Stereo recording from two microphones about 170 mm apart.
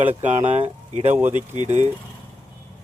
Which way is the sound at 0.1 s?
35° right (ahead or behind).